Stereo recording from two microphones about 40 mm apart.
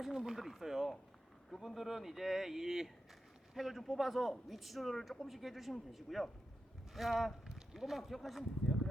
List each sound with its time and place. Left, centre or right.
0.0 s a man's voice: centre